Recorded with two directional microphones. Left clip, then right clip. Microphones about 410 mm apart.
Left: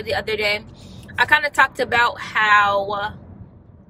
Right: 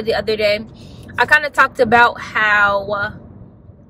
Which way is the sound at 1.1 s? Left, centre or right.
Centre.